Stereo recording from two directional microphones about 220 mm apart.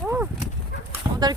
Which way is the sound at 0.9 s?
15° right (ahead or behind).